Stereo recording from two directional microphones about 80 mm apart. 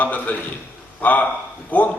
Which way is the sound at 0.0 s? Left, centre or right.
Centre.